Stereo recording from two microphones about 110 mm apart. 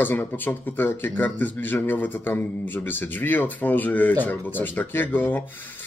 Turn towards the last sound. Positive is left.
turn(degrees=15)  # may be behind; listen again after turning